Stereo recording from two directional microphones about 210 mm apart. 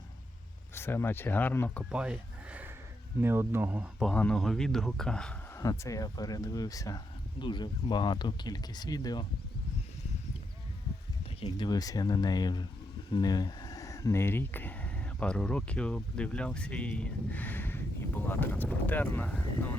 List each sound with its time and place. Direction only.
0.7 s speech: 10° left (ahead or behind)
1.9 s a sound: 5° right (ahead or behind)
3.2 s speech: 10° right (ahead or behind)
4.1 s speech: 5° left (ahead or behind)
5.5 s speech: 15° left (ahead or behind)
11.3 s speech: 25° left (ahead or behind); by 19.3 s 10° left (ahead or behind)